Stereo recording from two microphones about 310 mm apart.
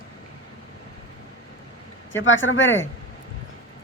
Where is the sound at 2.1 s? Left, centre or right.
Left.